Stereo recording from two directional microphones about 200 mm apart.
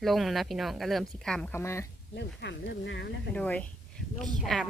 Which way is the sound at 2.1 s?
60° left (ahead or behind).